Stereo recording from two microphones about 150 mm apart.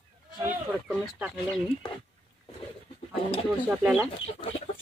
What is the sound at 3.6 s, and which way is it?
Speech, 5° right (ahead or behind).